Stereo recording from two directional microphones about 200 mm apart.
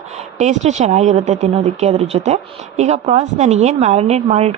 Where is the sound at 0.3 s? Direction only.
35° right (ahead or behind).